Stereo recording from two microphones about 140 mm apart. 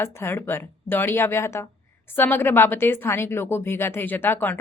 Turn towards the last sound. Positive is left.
turn(degrees=15)  # may be behind; listen again after turning